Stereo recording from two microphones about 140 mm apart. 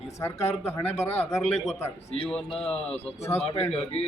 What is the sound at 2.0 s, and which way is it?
Speech, 40° left (ahead or behind).